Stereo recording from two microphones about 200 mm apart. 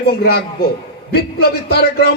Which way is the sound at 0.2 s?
50° left (ahead or behind).